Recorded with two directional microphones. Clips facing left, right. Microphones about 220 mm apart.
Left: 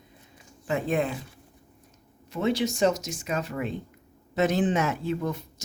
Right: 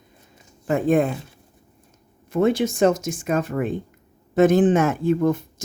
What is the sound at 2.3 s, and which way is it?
Speech, 50° right (ahead or behind).